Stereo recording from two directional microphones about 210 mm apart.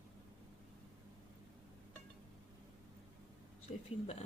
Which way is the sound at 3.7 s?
30° left (ahead or behind).